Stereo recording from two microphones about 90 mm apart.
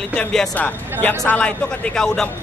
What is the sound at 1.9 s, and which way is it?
Speech, 5° left (ahead or behind).